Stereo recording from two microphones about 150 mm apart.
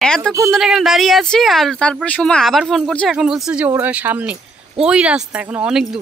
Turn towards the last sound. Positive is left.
turn(degrees=-5)  # may be behind; listen again after turning